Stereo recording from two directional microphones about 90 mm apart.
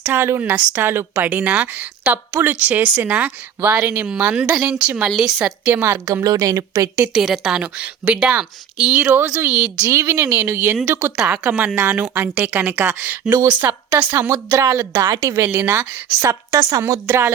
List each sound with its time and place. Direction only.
0.1 s a woman's voice: 25° right (ahead or behind); by 5.5 s 5° right (ahead or behind)
5.6 s a woman's voice: 25° right (ahead or behind)
6.1 s a woman's voice: 40° right (ahead or behind)
7.1 s speech: 5° right (ahead or behind)
9.8 s a woman's voice: 30° right (ahead or behind)
14.3 s a woman's voice: 35° right (ahead or behind)
16.5 s a woman's voice: 40° right (ahead or behind)